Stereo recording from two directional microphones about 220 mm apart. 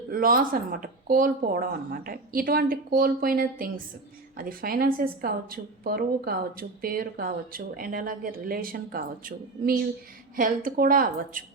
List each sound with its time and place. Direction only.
0.1 s a woman's voice: 40° right (ahead or behind)